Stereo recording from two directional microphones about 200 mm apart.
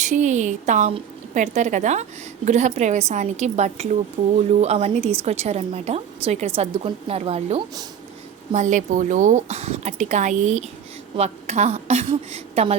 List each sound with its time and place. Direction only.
0.0 s a woman's voice: 35° right (ahead or behind)
4.2 s speech: 20° right (ahead or behind)
4.6 s a woman's voice: 30° right (ahead or behind)